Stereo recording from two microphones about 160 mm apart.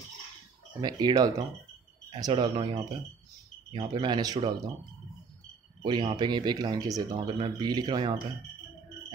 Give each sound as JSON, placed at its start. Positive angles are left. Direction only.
{"t": 0.7, "sound": "speech", "side_deg": -25}
{"t": 5.8, "sound": "speech", "side_deg": -30}